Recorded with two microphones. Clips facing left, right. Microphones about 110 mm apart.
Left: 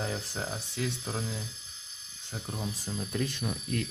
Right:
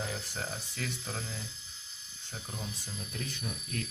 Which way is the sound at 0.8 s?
20° left (ahead or behind).